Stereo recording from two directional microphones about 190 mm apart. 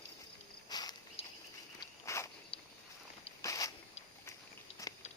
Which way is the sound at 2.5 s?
25° left (ahead or behind).